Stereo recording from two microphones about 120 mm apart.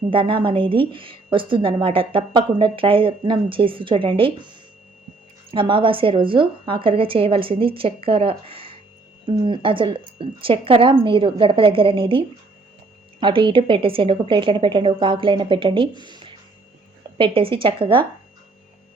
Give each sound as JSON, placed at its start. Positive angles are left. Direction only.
{"t": 0.1, "sound": "a woman's voice", "side_deg": -45}